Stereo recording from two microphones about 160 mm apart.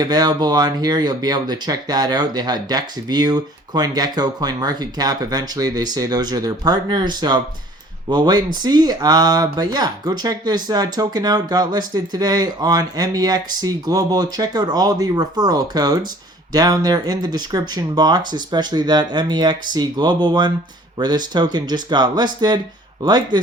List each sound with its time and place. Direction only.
0.0 s speech: 25° right (ahead or behind)